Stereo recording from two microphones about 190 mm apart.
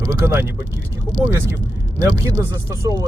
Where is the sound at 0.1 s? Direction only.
10° right (ahead or behind).